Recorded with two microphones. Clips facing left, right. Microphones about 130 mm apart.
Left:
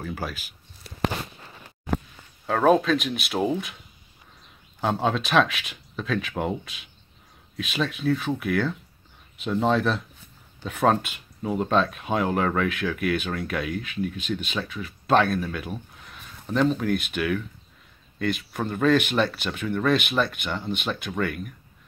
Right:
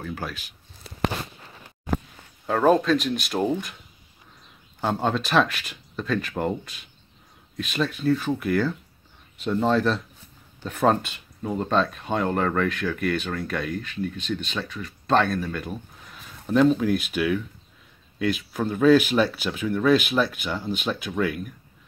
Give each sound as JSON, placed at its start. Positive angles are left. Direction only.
{"t": 0.0, "sound": "speech", "side_deg": 5}
{"t": 2.4, "sound": "speech", "side_deg": 0}
{"t": 4.7, "sound": "speech", "side_deg": 0}